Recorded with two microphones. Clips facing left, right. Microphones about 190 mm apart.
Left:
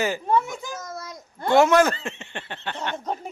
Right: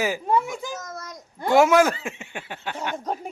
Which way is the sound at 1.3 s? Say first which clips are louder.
Even; 5° right (ahead or behind).